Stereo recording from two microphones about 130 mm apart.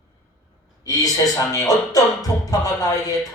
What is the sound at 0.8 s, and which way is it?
Music, 25° left (ahead or behind).